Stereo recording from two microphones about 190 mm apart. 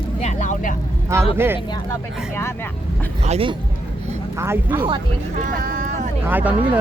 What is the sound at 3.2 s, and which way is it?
Speech, 30° right (ahead or behind).